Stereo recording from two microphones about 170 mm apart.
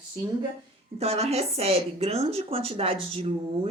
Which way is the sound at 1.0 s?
35° right (ahead or behind).